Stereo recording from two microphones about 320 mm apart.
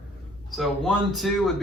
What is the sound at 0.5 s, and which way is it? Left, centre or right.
Speech, centre.